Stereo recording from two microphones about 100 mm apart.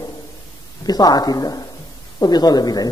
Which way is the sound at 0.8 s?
40° left (ahead or behind).